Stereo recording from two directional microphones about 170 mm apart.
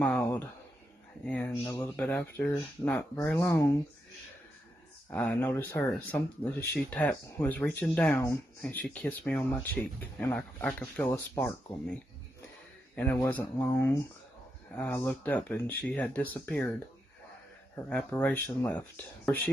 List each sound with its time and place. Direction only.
0.0 s a sound: 5° left (ahead or behind)
1.2 s speech: 5° left (ahead or behind)
1.5 s speech: 20° left (ahead or behind)
2.0 s speech: 10° left (ahead or behind)
5.1 s speech: 10° left (ahead or behind)
17.8 s speech: 10° left (ahead or behind)